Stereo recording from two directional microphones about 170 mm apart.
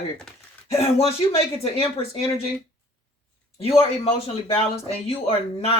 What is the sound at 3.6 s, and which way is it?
Speech, 35° left (ahead or behind).